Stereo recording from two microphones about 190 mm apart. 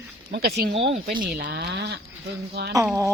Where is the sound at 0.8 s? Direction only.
70° right (ahead or behind).